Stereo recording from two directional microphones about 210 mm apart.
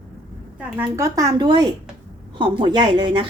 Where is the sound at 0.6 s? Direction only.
10° right (ahead or behind).